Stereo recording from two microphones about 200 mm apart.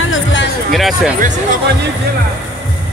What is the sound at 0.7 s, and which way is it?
Speech, centre (ahead or behind).